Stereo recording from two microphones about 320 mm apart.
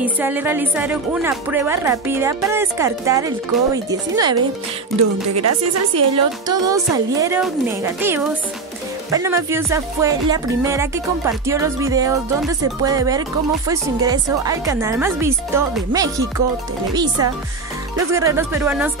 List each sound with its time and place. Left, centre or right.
0.0 s a woman's voice: centre
5.3 s a woman's voice: right
6.4 s a woman's voice: centre